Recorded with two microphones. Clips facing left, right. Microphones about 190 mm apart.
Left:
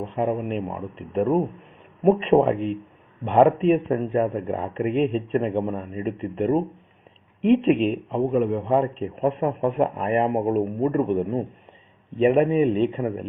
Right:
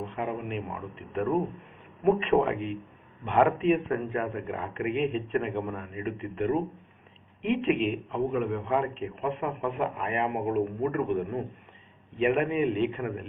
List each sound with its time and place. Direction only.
0.2 s speech: 35° left (ahead or behind)